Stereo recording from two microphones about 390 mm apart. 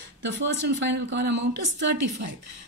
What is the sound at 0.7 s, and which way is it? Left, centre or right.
Speech, right.